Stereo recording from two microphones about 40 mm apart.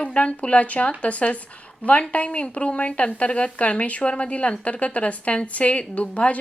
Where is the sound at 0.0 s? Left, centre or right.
Left.